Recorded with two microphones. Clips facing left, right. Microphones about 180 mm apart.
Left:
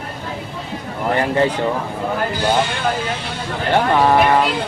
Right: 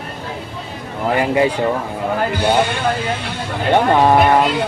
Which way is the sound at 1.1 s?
10° right (ahead or behind).